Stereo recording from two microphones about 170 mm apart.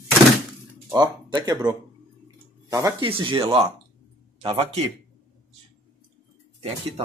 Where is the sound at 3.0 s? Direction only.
30° right (ahead or behind).